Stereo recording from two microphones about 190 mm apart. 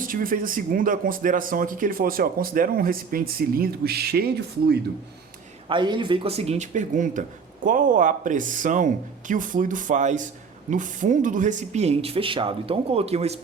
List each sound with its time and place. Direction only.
0.0 s speech: 45° right (ahead or behind)
5.6 s speech: 25° right (ahead or behind)